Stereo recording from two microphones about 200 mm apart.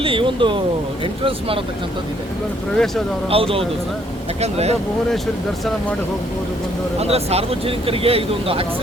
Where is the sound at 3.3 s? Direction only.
30° right (ahead or behind).